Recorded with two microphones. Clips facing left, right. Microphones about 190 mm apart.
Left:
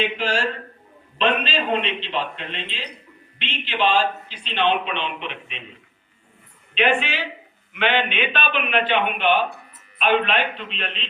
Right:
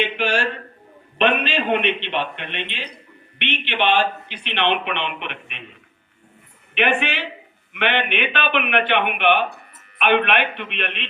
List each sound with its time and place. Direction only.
0.0 s speech: 65° right (ahead or behind)
6.7 s speech: 60° right (ahead or behind)